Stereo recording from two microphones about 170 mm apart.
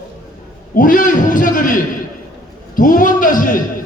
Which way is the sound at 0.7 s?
55° left (ahead or behind).